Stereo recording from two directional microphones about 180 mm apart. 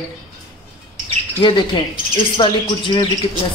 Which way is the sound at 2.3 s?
25° left (ahead or behind).